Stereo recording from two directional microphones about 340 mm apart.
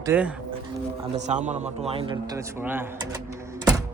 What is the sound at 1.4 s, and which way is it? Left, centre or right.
Speech, right.